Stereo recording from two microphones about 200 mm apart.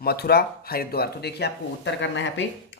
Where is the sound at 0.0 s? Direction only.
50° left (ahead or behind).